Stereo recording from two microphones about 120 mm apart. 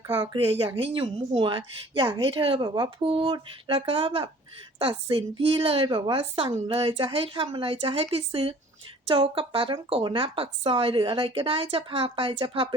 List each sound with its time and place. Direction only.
0.1 s a woman's voice: 50° right (ahead or behind)